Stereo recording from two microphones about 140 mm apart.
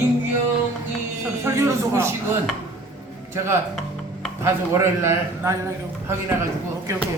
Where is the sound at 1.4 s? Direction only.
20° right (ahead or behind).